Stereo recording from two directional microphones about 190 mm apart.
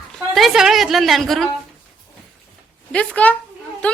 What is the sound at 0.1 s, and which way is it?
A woman's voice, centre (ahead or behind).